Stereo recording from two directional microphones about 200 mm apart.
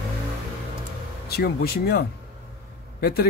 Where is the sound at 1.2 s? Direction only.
50° left (ahead or behind).